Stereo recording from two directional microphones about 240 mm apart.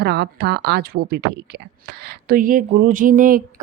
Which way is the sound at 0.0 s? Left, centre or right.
Right.